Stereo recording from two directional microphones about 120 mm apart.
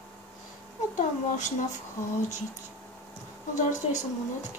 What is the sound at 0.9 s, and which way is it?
Speech, 85° left.